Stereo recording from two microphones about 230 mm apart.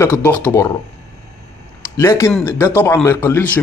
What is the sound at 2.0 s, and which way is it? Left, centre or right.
A man's voice, centre.